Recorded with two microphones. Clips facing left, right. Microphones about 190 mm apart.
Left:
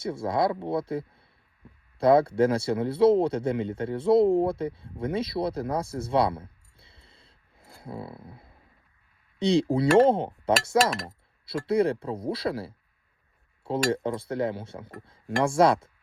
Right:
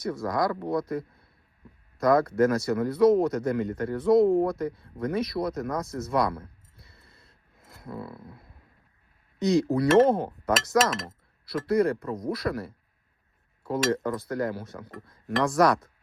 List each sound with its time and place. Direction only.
0.0 s speech: 30° left (ahead or behind)